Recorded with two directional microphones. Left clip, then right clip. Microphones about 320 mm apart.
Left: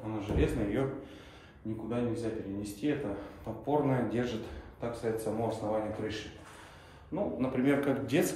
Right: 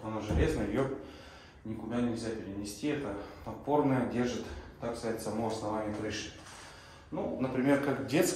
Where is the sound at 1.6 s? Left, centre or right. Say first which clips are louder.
Left 3 dB; centre.